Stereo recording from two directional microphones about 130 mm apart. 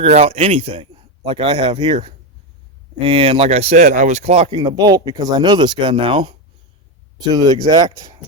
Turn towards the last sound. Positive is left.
turn(degrees=-30)  # may be behind; listen again after turning